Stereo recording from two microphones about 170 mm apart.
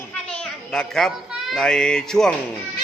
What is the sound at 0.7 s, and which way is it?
A man's voice, 5° left (ahead or behind).